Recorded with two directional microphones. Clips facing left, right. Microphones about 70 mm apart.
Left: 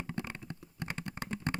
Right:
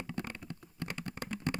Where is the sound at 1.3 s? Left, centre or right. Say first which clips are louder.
Even; left.